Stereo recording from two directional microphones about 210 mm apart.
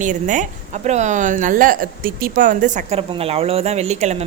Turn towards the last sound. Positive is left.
turn(degrees=-30)  # may be behind; listen again after turning